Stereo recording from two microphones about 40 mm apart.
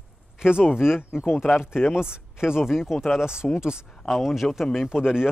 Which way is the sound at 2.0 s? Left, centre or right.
Centre.